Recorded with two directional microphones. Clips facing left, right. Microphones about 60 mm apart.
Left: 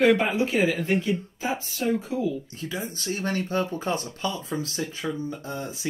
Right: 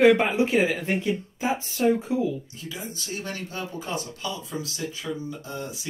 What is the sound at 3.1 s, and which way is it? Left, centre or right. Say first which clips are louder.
Speech: left 8 dB; left.